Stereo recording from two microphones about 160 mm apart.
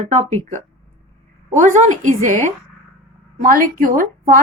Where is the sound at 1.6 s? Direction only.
50° right (ahead or behind).